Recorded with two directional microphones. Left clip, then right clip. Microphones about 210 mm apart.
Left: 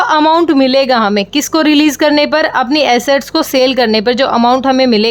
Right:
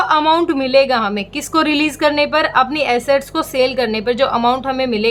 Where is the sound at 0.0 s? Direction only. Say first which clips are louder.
Left 4 dB; 30° left (ahead or behind).